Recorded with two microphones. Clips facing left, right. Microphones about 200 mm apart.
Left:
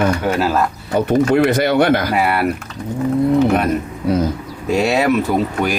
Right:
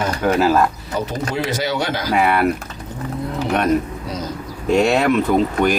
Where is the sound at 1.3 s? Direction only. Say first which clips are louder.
Left 8 dB; 60° left (ahead or behind).